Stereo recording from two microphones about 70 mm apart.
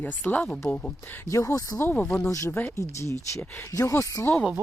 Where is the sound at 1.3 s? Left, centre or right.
Left.